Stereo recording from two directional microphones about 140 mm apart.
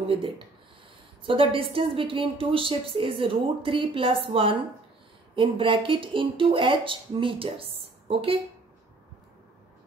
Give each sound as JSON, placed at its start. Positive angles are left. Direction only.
{"t": 1.2, "sound": "a woman's voice", "side_deg": -40}